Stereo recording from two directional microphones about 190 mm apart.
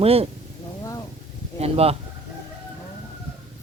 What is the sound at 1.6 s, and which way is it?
Speech, 30° right (ahead or behind).